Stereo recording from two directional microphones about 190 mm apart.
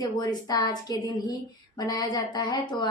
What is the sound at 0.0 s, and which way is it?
Speech, 20° left (ahead or behind).